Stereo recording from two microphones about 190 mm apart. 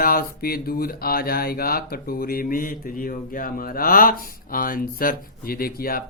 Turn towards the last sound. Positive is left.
turn(degrees=50)  # may be behind; listen again after turning